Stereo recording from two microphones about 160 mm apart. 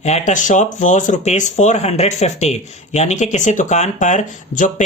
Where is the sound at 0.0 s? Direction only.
45° left (ahead or behind).